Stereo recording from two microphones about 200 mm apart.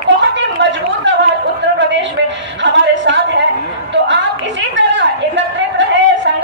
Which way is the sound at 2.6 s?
65° right (ahead or behind).